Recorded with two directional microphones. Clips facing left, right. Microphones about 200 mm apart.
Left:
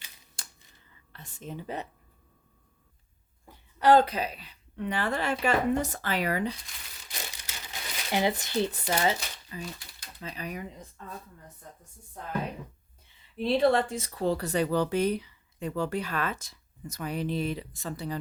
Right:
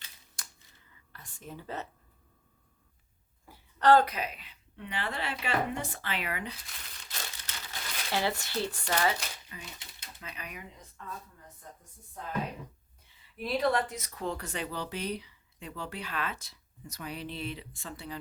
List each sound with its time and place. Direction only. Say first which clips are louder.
0.4 s a sound: left 1 dB; 30° left (ahead or behind)
1.1 s speech: left 5 dB; 25° left (ahead or behind)
3.8 s a woman's voice: left 2 dB; 10° left (ahead or behind)
4.0 s speech: left 3 dB; 30° left (ahead or behind)
7.1 s crumpling: left 2 dB; 15° left (ahead or behind)
8.9 s speech: left 2 dB; 25° left (ahead or behind)
13.3 s speech: left 5 dB; 30° left (ahead or behind)